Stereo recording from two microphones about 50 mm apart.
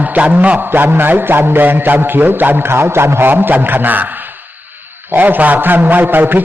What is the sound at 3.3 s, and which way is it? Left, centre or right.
A man's voice, right.